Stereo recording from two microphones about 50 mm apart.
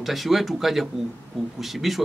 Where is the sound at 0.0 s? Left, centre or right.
Centre.